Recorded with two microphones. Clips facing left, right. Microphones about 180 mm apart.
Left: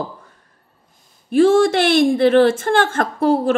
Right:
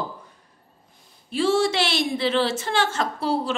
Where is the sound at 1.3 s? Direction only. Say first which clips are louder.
Left 8 dB; 50° left (ahead or behind).